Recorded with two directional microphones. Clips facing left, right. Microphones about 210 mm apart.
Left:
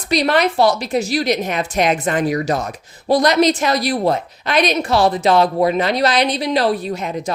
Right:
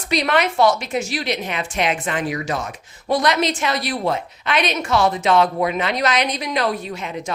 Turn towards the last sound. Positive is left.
turn(degrees=40)  # may be behind; listen again after turning